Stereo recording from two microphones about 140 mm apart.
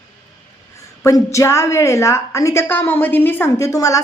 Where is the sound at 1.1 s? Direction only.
20° left (ahead or behind).